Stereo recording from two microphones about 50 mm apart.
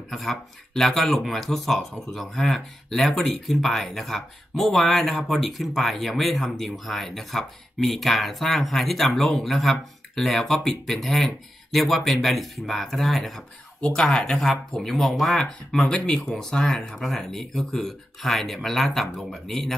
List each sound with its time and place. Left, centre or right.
0.1 s speech: centre
13.7 s speech: centre
14.9 s speech: centre